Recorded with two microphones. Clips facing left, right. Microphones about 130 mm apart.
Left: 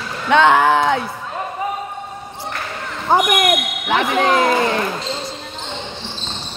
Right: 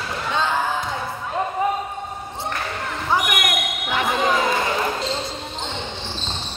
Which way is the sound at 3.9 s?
70° left (ahead or behind).